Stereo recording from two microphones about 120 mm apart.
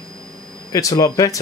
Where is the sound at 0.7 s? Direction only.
30° left (ahead or behind).